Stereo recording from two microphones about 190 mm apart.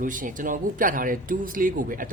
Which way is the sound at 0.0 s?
45° right (ahead or behind).